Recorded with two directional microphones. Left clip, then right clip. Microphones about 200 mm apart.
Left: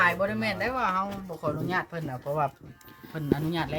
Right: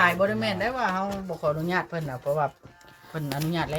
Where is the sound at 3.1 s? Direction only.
Centre (ahead or behind).